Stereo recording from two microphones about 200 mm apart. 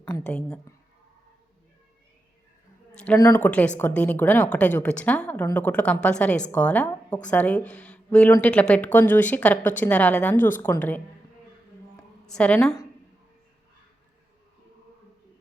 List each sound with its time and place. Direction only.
0.2 s speech: 5° left (ahead or behind)
3.3 s a woman's voice: 10° left (ahead or behind)
12.2 s a woman's voice: 5° left (ahead or behind)